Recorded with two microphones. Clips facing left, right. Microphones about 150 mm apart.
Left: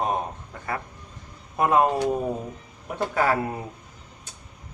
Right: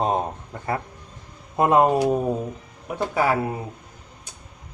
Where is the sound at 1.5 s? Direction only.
25° right (ahead or behind).